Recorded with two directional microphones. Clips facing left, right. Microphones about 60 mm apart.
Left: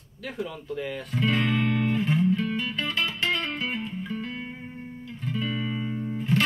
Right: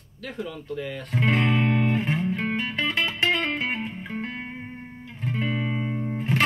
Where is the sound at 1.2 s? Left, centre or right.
Right.